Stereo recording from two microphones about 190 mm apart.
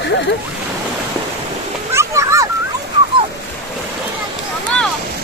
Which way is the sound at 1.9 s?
15° right (ahead or behind).